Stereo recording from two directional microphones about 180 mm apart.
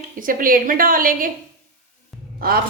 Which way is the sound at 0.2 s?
50° right (ahead or behind).